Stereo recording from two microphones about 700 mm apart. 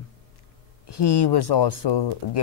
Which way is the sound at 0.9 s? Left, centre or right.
Left.